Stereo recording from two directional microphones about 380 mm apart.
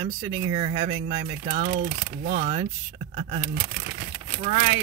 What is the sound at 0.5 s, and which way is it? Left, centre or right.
Speech, centre.